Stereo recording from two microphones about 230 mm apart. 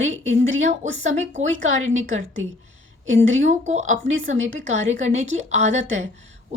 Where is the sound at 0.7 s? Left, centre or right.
Right.